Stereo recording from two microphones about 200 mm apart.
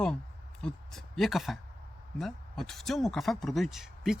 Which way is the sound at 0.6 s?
Centre (ahead or behind).